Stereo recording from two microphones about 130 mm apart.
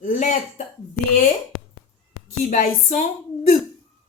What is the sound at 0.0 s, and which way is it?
Speech, 75° left (ahead or behind).